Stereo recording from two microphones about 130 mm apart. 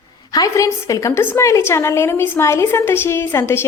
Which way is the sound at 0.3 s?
25° left (ahead or behind).